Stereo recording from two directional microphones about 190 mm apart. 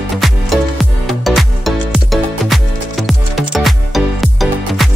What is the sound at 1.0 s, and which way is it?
Music, centre (ahead or behind).